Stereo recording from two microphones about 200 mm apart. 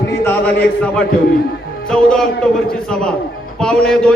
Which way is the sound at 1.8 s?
5° left (ahead or behind).